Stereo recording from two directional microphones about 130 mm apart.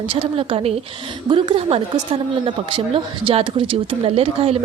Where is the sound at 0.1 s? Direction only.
50° right (ahead or behind).